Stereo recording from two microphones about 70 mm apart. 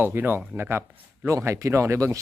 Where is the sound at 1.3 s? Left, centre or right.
Right.